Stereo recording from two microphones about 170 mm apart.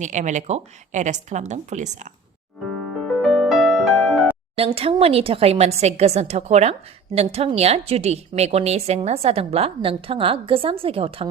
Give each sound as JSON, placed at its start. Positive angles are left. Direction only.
{"t": 0.0, "sound": "a woman's voice", "side_deg": -45}
{"t": 3.0, "sound": "music", "side_deg": 0}
{"t": 4.5, "sound": "a woman's voice", "side_deg": -35}